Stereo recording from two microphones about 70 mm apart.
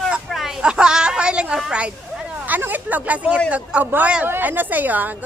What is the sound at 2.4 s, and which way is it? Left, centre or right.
Speech, right.